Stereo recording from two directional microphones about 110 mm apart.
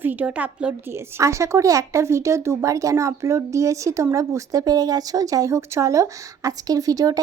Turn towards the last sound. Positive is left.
turn(degrees=-35)  # may be behind; listen again after turning